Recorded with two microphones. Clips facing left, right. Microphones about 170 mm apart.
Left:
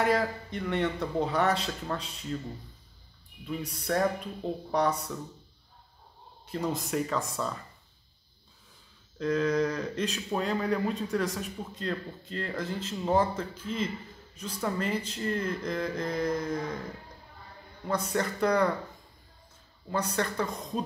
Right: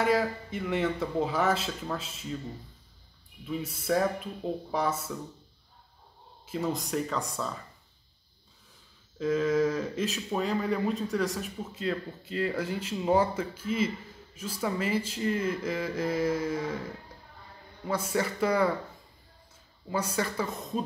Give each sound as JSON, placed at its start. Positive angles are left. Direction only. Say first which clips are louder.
{"t": 0.0, "sound": "speech", "louder": "right 1 dB", "side_deg": 0}
{"t": 3.4, "sound": "speech", "louder": "right 2 dB", "side_deg": -5}
{"t": 6.4, "sound": "speech", "louder": "right 1 dB", "side_deg": 0}
{"t": 9.2, "sound": "a man's voice", "louder": "right 1 dB", "side_deg": -5}
{"t": 17.8, "sound": "speech", "louder": "even", "side_deg": -5}
{"t": 19.9, "sound": "speech", "louder": "even", "side_deg": -5}